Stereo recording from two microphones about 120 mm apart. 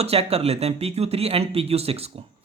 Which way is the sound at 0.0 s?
55° right (ahead or behind).